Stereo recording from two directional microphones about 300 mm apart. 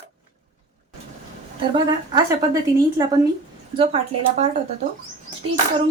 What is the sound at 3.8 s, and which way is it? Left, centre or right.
Speech, right.